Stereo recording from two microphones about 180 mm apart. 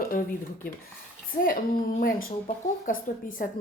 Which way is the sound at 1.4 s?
50° left (ahead or behind).